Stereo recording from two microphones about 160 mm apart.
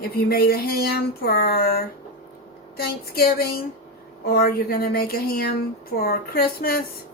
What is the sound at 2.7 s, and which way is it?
A woman's voice, 70° left (ahead or behind).